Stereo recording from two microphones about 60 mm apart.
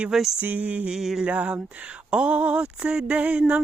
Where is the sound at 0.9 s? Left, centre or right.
Centre.